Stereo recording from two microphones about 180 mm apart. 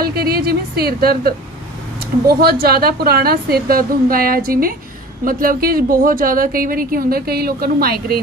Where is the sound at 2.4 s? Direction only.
60° right (ahead or behind).